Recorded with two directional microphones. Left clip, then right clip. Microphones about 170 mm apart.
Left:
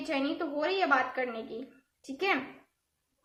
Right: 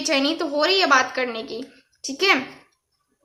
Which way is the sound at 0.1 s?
30° right (ahead or behind).